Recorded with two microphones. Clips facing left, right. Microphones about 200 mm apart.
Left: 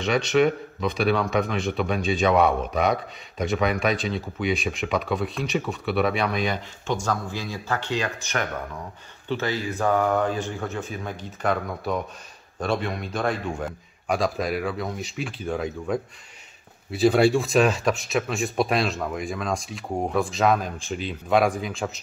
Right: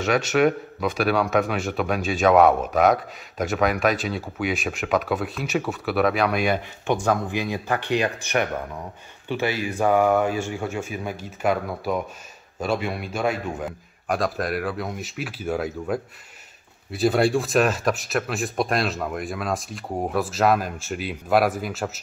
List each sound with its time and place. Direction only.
0.0 s a man's voice: 5° right (ahead or behind)
7.1 s speech: 15° right (ahead or behind)
9.3 s a man's voice: 15° right (ahead or behind)